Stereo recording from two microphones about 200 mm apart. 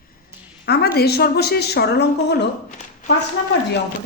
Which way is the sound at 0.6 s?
55° left (ahead or behind).